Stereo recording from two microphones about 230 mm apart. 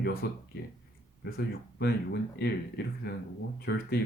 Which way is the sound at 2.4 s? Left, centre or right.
Left.